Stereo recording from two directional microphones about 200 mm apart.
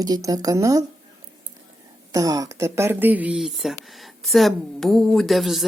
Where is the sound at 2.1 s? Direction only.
15° right (ahead or behind).